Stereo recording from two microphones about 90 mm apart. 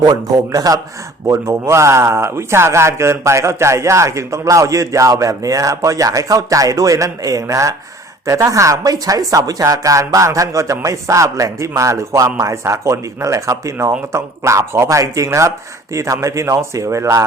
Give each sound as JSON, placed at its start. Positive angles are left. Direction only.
{"t": 0.0, "sound": "speech", "side_deg": -45}
{"t": 1.3, "sound": "a man's voice", "side_deg": -30}